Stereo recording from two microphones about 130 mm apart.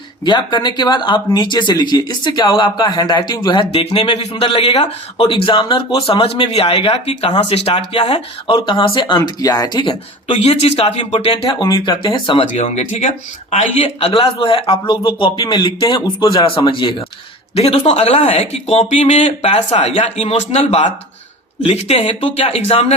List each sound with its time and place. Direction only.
0.3 s speech: 35° left (ahead or behind)
10.4 s a man's voice: 55° left (ahead or behind)
11.4 s speech: 35° left (ahead or behind)
17.5 s speech: 50° left (ahead or behind)